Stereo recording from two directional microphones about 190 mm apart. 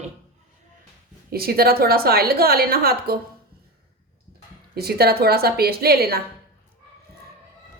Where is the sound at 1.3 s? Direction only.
55° right (ahead or behind).